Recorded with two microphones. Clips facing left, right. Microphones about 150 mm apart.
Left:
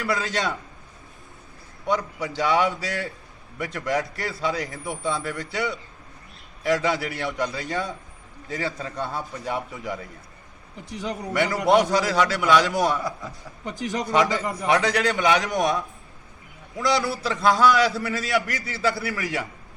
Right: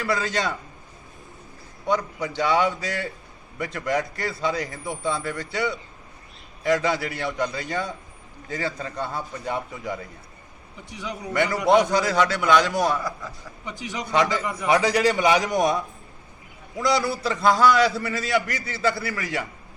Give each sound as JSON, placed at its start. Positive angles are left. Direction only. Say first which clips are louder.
{"t": 0.0, "sound": "a man's voice", "louder": "right 1 dB", "side_deg": 0}
{"t": 2.2, "sound": "a man's voice", "louder": "even", "side_deg": 5}
{"t": 10.9, "sound": "a man's voice", "louder": "left 3 dB", "side_deg": 45}
{"t": 11.3, "sound": "a man's voice", "louder": "right 1 dB", "side_deg": 0}
{"t": 13.0, "sound": "a man's voice", "louder": "left 1 dB", "side_deg": 25}
{"t": 13.7, "sound": "a man's voice", "louder": "left 4 dB", "side_deg": 45}
{"t": 14.1, "sound": "a man's voice", "louder": "even", "side_deg": 0}